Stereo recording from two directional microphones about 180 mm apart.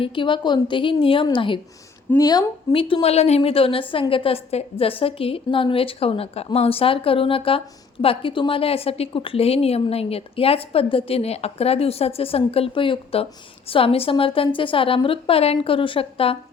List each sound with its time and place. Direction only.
0.0 s a woman's voice: 30° left (ahead or behind)